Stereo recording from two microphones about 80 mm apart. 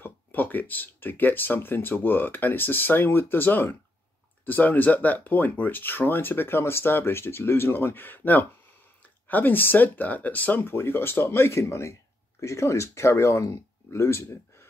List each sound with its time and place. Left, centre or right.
0.0 s speech: left